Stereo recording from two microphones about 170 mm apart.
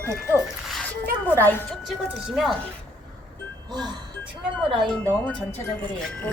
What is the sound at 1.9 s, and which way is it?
Speech, centre (ahead or behind).